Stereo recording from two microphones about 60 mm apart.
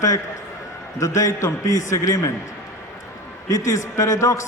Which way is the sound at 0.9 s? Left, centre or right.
Left.